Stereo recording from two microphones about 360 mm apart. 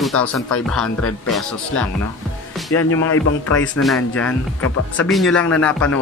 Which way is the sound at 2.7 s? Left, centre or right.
Left.